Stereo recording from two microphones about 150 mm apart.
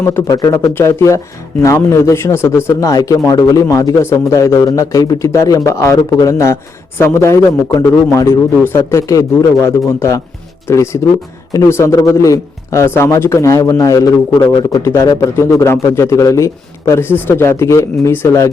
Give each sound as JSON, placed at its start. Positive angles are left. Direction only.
{"t": 0.0, "sound": "a man's voice", "side_deg": 20}